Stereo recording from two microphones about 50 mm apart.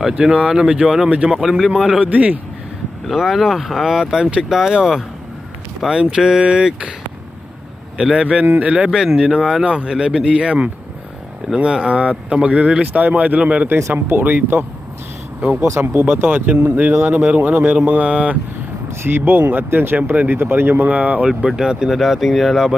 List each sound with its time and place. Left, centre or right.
0.0 s speech: centre
1.4 s speech: centre
2.0 s speech: right
3.1 s speech: centre
7.9 s speech: centre
8.5 s speech: right
9.4 s speech: centre
9.6 s speech: centre
13.9 s speech: right
15.8 s speech: right
16.2 s speech: right
19.0 s speech: right
20.9 s speech: right
21.2 s speech: centre